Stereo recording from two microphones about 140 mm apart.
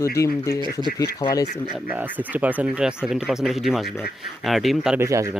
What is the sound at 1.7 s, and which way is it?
Speech, 10° right (ahead or behind).